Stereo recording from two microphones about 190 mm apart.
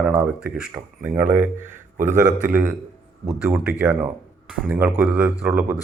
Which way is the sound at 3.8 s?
5° right (ahead or behind).